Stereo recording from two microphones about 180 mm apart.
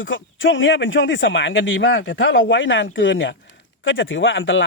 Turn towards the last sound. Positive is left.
turn(degrees=90)